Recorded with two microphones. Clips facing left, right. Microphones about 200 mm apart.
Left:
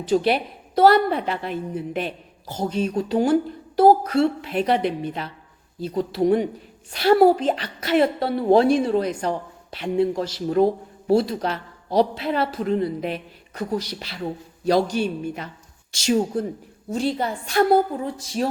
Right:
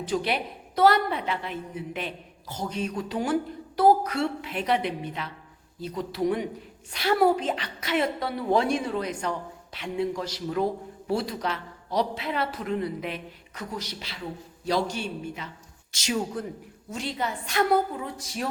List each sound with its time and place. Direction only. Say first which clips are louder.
0.1 s a woman's voice: left 8 dB; 35° left (ahead or behind)
15.9 s a woman's voice: left 8 dB; 30° left (ahead or behind)